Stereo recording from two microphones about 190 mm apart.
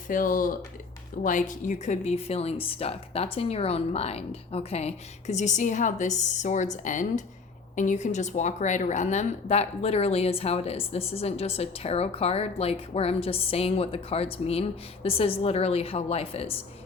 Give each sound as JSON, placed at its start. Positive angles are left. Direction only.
{"t": 0.1, "sound": "speech", "side_deg": 45}